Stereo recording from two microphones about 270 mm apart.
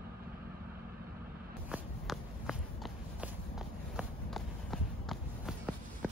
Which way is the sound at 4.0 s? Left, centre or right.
Centre.